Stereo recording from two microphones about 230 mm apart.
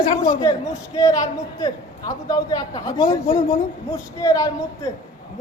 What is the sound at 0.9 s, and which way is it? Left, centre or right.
A man's voice, centre.